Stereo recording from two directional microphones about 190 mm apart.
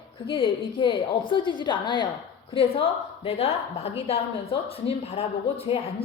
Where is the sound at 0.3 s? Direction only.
25° left (ahead or behind).